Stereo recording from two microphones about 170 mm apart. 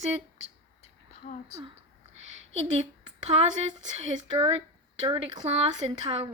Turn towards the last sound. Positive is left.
turn(degrees=-35)  # may be behind; listen again after turning